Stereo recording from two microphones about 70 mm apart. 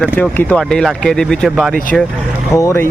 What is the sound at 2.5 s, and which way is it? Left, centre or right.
Speech, left.